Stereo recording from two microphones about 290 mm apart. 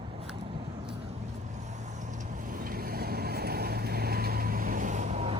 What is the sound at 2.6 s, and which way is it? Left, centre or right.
Vehicle, right.